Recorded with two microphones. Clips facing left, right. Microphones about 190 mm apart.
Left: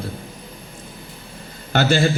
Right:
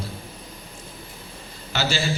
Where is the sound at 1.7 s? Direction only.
55° left (ahead or behind).